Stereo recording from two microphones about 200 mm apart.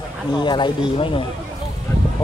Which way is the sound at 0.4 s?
25° left (ahead or behind).